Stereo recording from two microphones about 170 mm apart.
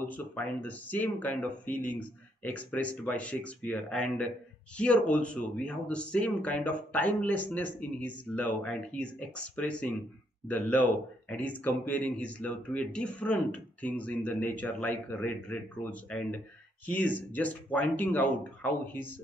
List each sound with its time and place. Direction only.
0.0 s a man's voice: 10° left (ahead or behind)